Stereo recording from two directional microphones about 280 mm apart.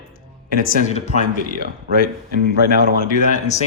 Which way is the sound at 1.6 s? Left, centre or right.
Right.